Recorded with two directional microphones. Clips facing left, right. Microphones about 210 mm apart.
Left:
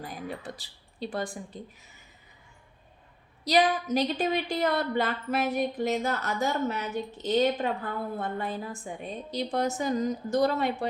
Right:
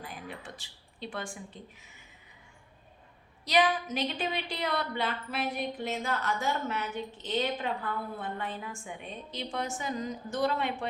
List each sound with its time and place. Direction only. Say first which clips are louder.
0.0 s speech: left 6 dB; 40° left (ahead or behind)
3.4 s a woman's voice: left 3 dB; 35° left (ahead or behind)